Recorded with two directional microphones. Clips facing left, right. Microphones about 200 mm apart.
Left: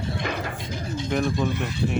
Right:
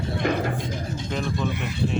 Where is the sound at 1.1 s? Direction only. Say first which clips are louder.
Left 4 dB; 15° left (ahead or behind).